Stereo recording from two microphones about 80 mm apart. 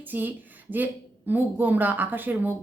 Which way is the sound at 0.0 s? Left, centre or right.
Right.